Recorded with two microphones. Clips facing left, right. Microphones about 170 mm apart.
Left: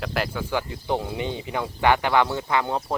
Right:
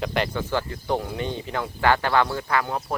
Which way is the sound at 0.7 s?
15° left (ahead or behind).